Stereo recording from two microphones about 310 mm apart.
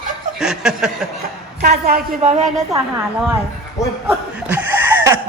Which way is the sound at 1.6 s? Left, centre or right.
Right.